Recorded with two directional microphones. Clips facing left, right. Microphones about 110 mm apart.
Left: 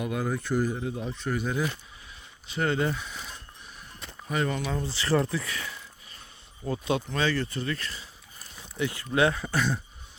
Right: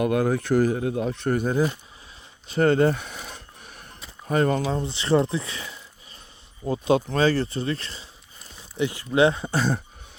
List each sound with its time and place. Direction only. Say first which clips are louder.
0.0 s speech: right 8 dB; 65° right (ahead or behind); by 1.6 s 45° right (ahead or behind)
2.5 s a sound: right 8 dB; 45° right (ahead or behind)
4.3 s speech: right 7 dB; 40° right (ahead or behind); by 5.8 s 25° right (ahead or behind)
6.7 s speech: right 7 dB; 35° right (ahead or behind)